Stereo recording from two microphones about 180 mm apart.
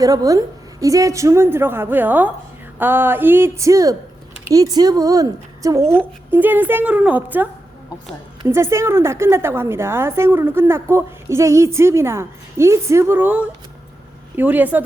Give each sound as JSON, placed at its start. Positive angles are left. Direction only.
{"t": 0.0, "sound": "a woman's voice", "side_deg": -20}
{"t": 8.4, "sound": "a woman's voice", "side_deg": -15}